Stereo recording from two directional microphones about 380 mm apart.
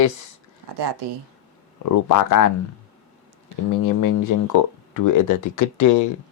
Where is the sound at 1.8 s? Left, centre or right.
Left.